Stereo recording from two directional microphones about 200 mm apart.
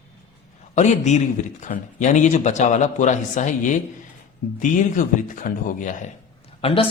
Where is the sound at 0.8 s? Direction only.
35° left (ahead or behind).